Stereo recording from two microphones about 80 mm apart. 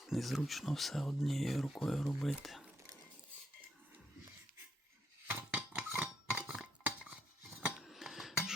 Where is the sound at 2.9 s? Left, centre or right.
Right.